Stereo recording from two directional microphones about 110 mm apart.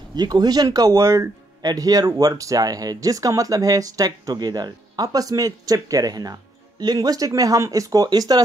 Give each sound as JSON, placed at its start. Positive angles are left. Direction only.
{"t": 0.1, "sound": "speech", "side_deg": -40}
{"t": 1.6, "sound": "speech", "side_deg": -35}